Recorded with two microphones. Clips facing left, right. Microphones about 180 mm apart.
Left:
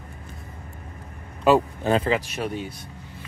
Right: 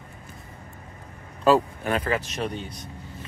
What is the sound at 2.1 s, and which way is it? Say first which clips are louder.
Speech: left 1 dB; 5° left (ahead or behind).